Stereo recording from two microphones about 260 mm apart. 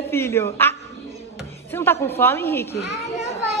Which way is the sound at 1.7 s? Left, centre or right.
Centre.